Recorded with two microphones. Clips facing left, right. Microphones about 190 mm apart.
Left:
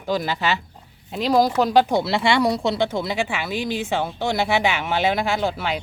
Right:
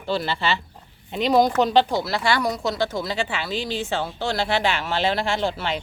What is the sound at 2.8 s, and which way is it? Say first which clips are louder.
Speech: left 2 dB; 15° left (ahead or behind).